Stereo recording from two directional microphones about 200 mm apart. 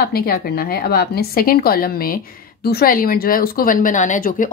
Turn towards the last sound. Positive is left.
turn(degrees=40)  # may be behind; listen again after turning